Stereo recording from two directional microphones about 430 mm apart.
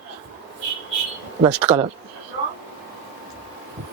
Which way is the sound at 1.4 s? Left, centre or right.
Centre.